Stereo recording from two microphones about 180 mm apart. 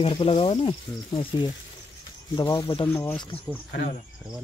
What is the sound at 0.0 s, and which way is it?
Speech, 35° left (ahead or behind).